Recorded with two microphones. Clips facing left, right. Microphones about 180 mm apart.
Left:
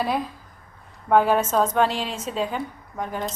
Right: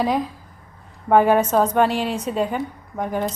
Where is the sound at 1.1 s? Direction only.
15° right (ahead or behind).